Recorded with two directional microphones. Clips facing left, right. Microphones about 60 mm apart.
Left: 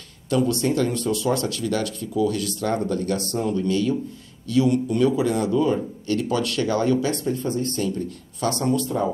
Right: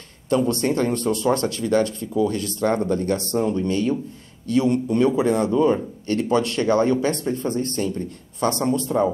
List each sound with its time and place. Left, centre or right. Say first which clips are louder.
0.3 s speech: right 1 dB; right